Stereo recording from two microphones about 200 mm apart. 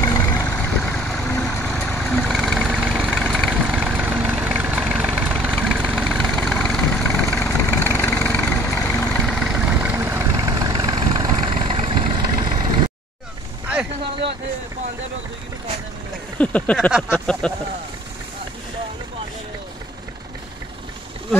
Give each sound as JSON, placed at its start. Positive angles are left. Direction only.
{"t": 0.0, "sound": "vehicle", "side_deg": 10}
{"t": 9.3, "sound": "vehicle", "side_deg": 0}
{"t": 16.3, "sound": "a sound", "side_deg": 5}
{"t": 16.9, "sound": "speech", "side_deg": 0}